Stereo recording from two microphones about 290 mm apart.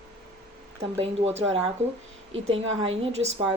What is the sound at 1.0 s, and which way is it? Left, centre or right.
Speech, right.